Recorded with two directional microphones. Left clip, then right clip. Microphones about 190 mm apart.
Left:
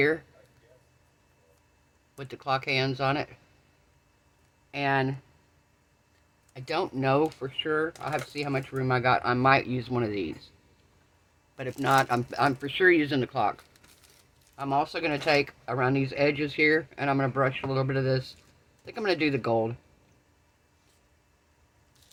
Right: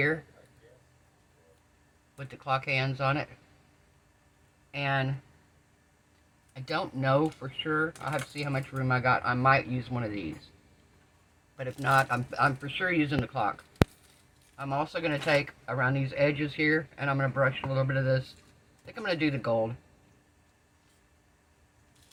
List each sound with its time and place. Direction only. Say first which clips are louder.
2.1 s speech: left 2 dB; 65° left (ahead or behind)
4.7 s speech: left 4 dB; 65° left (ahead or behind)
6.5 s speech: left 3 dB; 55° left (ahead or behind)
11.5 s speech: left 2 dB; 65° left (ahead or behind)
14.5 s speech: left 4 dB; 60° left (ahead or behind)